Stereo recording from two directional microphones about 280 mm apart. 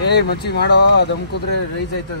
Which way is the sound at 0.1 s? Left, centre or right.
Left.